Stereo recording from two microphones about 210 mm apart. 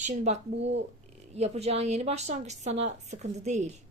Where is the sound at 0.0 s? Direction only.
35° right (ahead or behind).